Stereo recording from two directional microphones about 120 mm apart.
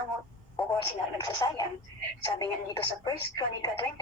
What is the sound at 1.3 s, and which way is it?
A woman's voice, 35° left (ahead or behind).